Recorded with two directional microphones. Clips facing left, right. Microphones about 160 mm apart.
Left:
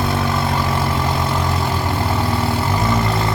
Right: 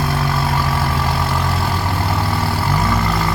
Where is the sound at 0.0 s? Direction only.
20° left (ahead or behind).